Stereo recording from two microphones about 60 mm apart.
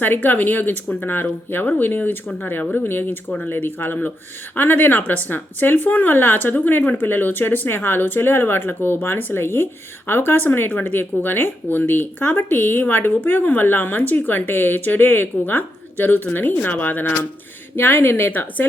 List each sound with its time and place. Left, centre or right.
0.0 s speech: left